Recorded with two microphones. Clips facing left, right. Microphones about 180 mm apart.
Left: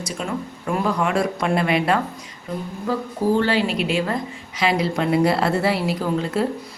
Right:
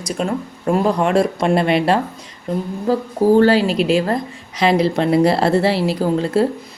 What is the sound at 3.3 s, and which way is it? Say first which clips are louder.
A woman's voice: right 8 dB; 40° right (ahead or behind).